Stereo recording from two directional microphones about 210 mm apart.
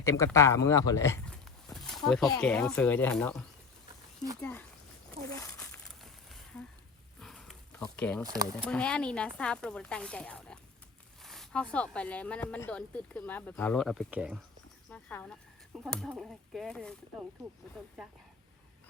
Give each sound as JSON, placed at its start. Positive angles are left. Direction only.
{"t": 0.0, "sound": "speech", "side_deg": 15}
{"t": 5.5, "sound": "a sound", "side_deg": 5}
{"t": 7.9, "sound": "speech", "side_deg": 5}
{"t": 8.2, "sound": "speech", "side_deg": -15}
{"t": 8.6, "sound": "speech", "side_deg": 5}
{"t": 14.8, "sound": "speech", "side_deg": 5}